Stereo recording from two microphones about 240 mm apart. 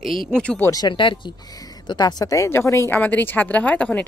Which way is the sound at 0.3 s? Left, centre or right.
Centre.